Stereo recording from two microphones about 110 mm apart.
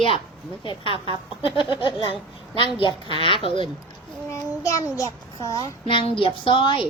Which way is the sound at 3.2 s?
55° left (ahead or behind).